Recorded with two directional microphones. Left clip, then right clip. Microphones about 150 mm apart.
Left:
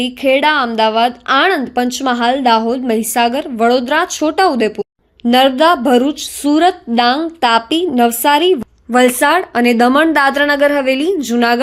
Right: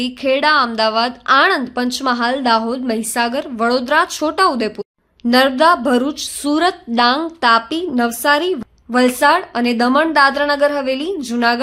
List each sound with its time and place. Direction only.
0.0 s a woman's voice: 5° left (ahead or behind); by 11.6 s 20° left (ahead or behind)